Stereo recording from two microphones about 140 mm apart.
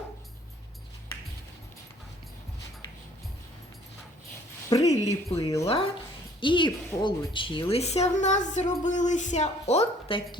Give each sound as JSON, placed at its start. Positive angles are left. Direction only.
{"t": 4.7, "sound": "speech", "side_deg": 30}
{"t": 6.4, "sound": "speech", "side_deg": 35}
{"t": 7.7, "sound": "music", "side_deg": 50}